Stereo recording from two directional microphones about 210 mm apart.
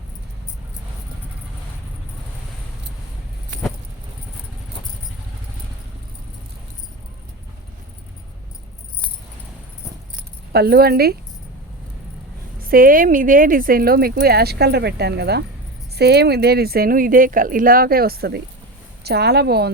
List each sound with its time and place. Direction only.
10.5 s speech: 50° right (ahead or behind)
12.6 s speech: 40° right (ahead or behind)